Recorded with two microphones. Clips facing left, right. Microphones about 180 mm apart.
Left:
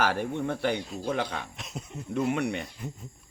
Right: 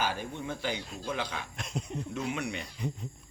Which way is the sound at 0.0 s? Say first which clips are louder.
Left 6 dB; 70° left (ahead or behind).